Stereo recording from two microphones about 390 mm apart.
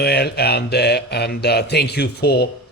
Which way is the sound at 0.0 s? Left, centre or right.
Left.